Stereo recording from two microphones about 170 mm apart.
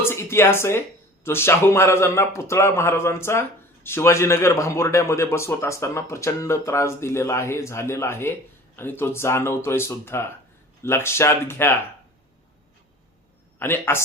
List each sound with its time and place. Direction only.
0.0 s a sound: 15° left (ahead or behind)
1.2 s speech: 15° left (ahead or behind)
13.6 s speech: 15° left (ahead or behind)